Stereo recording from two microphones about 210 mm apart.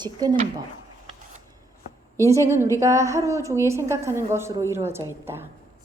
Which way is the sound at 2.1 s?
15° right (ahead or behind).